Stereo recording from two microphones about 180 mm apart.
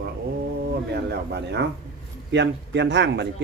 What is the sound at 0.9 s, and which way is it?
Speech, 65° right (ahead or behind).